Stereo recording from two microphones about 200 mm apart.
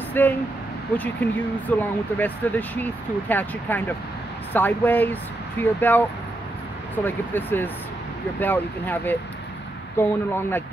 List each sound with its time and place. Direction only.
0.2 s speech: 10° left (ahead or behind)
7.1 s speech: 10° left (ahead or behind)